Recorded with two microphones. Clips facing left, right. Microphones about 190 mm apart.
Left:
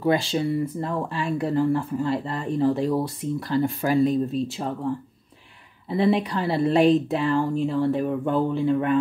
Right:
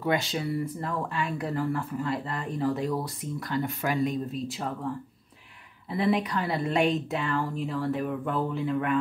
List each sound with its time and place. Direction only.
0.0 s speech: 30° left (ahead or behind)
5.9 s speech: 30° left (ahead or behind)